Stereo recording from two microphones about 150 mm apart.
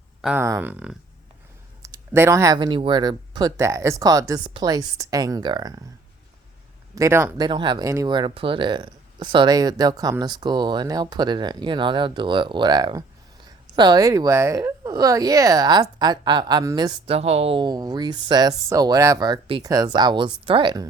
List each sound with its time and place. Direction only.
0.2 s speech: 5° right (ahead or behind)
0.4 s a woman's voice: 15° right (ahead or behind)
6.9 s speech: 20° right (ahead or behind)
7.3 s a woman's voice: 30° right (ahead or behind)